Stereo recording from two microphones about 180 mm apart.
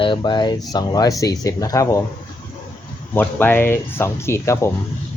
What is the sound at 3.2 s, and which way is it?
Speech, 10° left (ahead or behind).